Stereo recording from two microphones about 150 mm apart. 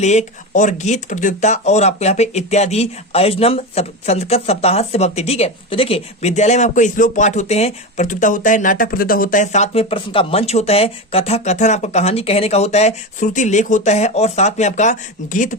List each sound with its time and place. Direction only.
0.0 s speech: 50° left (ahead or behind)